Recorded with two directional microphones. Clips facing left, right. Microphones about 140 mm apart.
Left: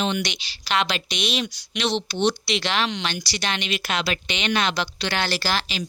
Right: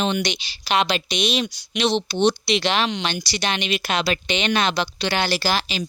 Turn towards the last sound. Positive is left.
turn(degrees=-15)  # may be behind; listen again after turning